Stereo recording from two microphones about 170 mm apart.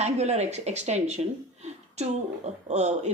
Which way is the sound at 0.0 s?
40° right (ahead or behind).